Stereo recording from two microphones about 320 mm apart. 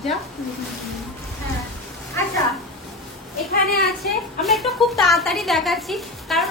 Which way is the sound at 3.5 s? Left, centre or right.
Left.